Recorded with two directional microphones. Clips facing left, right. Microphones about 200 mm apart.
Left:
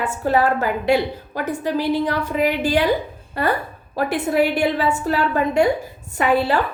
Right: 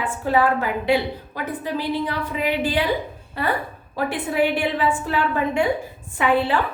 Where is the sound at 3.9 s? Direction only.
40° left (ahead or behind).